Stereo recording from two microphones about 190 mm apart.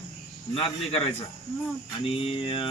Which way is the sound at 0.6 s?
30° left (ahead or behind).